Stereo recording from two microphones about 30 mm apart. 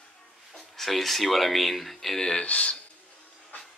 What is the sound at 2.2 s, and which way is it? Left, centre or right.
Speech, left.